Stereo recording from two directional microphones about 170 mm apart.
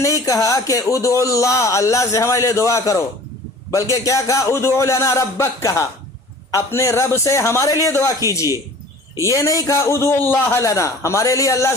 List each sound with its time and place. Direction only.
0.0 s a man's voice: 20° left (ahead or behind)